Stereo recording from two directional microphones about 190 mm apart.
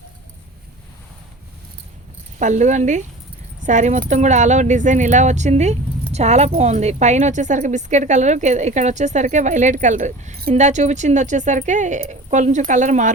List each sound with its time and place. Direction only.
2.4 s speech: 40° right (ahead or behind)